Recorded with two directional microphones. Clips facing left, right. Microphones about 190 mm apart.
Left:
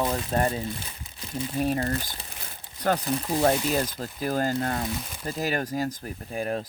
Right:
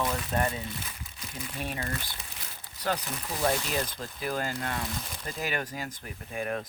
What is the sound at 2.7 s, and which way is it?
Crumpling, 50° left (ahead or behind).